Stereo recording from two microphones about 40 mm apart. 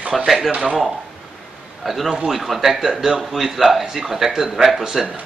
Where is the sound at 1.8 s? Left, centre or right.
Centre.